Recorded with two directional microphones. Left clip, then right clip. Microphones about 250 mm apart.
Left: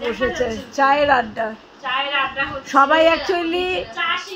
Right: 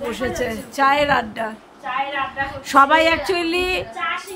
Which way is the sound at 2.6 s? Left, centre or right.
Centre.